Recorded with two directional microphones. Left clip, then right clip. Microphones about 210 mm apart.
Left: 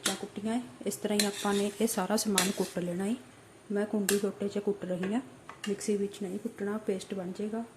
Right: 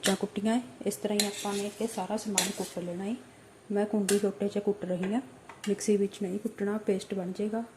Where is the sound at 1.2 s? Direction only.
20° left (ahead or behind).